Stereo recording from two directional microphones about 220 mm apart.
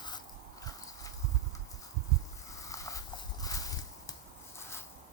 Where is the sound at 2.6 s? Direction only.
15° left (ahead or behind).